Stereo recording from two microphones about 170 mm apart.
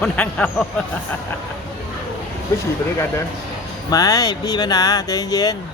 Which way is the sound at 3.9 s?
20° left (ahead or behind).